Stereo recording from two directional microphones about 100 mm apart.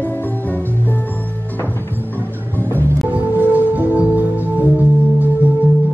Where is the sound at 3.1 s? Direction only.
15° right (ahead or behind).